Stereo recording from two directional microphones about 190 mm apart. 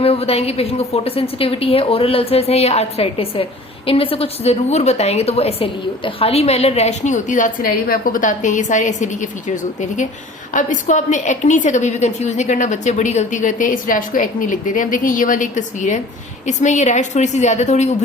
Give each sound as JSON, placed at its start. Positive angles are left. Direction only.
{"t": 0.0, "sound": "a woman's voice", "side_deg": 30}
{"t": 10.5, "sound": "a woman's voice", "side_deg": 40}